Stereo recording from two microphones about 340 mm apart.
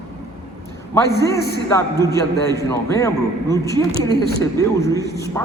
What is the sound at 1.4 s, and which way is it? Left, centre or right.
Speech, left.